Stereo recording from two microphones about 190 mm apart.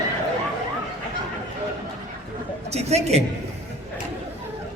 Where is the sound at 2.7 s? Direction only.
35° right (ahead or behind).